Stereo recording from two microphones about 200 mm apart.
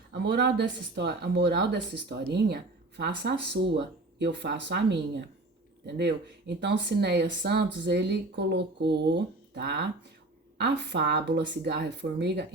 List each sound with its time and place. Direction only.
0.1 s speech: 55° right (ahead or behind)